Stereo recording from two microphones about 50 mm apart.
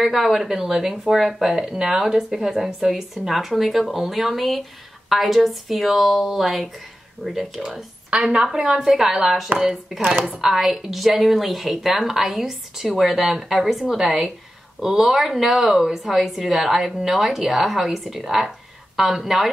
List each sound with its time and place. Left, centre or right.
0.0 s speech: centre
8.1 s a woman's voice: right; by 19.5 s centre